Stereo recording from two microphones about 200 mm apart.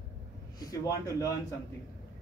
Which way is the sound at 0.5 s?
15° left (ahead or behind).